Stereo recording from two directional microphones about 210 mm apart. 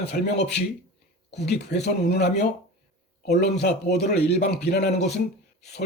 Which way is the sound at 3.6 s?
50° left (ahead or behind).